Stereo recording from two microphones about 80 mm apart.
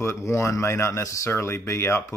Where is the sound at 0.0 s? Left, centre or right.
Left.